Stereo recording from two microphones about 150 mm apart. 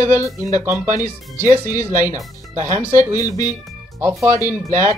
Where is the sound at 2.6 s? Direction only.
15° right (ahead or behind).